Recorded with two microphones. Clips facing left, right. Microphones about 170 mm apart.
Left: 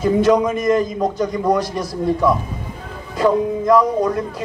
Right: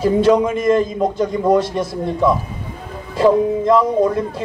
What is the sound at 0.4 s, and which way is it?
A man's voice, 25° right (ahead or behind).